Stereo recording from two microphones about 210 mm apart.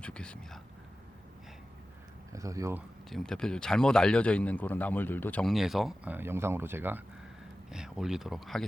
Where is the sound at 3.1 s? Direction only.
Centre (ahead or behind).